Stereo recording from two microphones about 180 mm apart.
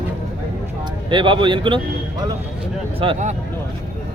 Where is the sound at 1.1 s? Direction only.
25° right (ahead or behind).